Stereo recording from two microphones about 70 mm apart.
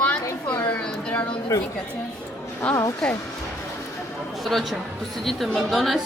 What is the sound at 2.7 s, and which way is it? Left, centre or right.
Speech, left.